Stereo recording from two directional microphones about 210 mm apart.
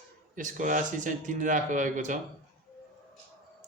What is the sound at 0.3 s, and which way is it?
Speech, 35° right (ahead or behind).